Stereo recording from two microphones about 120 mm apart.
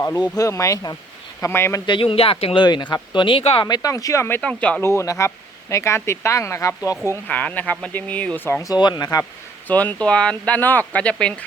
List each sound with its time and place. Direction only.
0.3 s speech: 25° left (ahead or behind)
1.9 s speech: 45° left (ahead or behind)
2.6 s speech: 40° left (ahead or behind)
3.7 s speech: 30° left (ahead or behind)
4.4 s speech: 10° left (ahead or behind)
4.8 s speech: 25° left (ahead or behind)
7.1 s speech: 15° left (ahead or behind)
8.6 s speech: 35° left (ahead or behind)
9.6 s speech: 15° left (ahead or behind)